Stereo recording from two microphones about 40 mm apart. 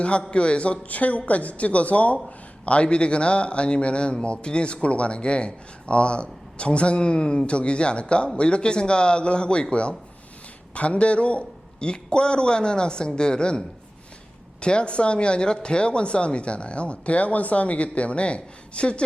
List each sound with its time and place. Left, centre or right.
0.0 s speech: left